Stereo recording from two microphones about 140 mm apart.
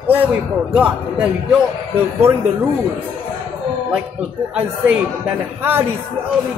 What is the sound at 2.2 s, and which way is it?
Speech, 20° right (ahead or behind).